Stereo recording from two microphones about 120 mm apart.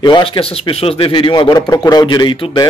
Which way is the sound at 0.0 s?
45° left (ahead or behind).